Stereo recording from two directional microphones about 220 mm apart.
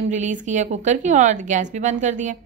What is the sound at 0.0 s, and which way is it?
A woman's voice, 35° right (ahead or behind).